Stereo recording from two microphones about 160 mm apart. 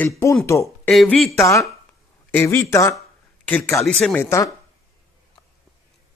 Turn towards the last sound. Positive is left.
turn(degrees=5)  # may be behind; listen again after turning